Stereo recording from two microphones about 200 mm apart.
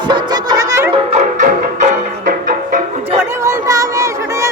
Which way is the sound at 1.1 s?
40° right (ahead or behind).